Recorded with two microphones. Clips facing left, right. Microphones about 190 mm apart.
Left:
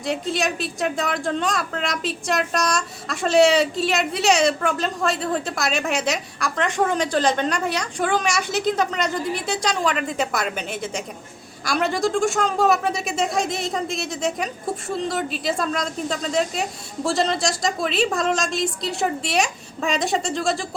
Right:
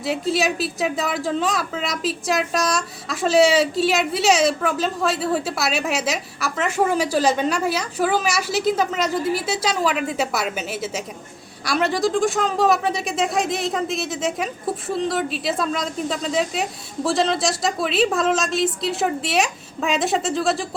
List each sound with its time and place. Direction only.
0.0 s a woman's voice: 5° right (ahead or behind)